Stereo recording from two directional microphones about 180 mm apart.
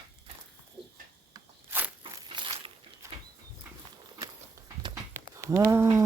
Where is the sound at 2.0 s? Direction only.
25° right (ahead or behind).